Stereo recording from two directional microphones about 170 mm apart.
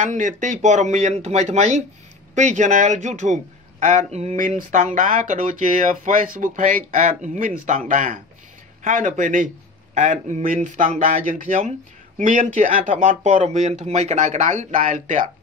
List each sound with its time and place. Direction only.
0.0 s speech: 45° right (ahead or behind)